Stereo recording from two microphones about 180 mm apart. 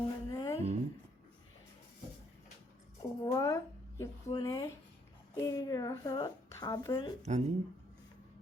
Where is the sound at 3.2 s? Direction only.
15° left (ahead or behind).